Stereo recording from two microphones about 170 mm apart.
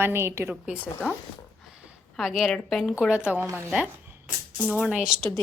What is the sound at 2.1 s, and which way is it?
A woman's voice, centre (ahead or behind).